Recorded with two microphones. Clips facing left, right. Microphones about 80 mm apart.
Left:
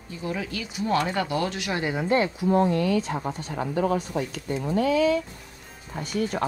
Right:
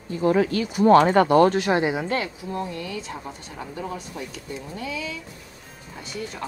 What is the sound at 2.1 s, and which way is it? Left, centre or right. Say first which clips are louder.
Speech: left 5 dB; left.